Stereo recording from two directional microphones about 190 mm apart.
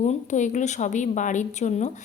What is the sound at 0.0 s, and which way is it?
A woman's voice, 40° left (ahead or behind).